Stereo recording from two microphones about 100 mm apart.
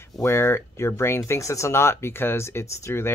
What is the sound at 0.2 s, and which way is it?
Speech, 25° left (ahead or behind).